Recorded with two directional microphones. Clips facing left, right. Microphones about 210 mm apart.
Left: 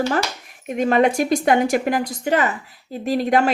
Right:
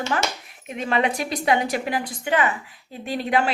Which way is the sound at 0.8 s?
45° left (ahead or behind).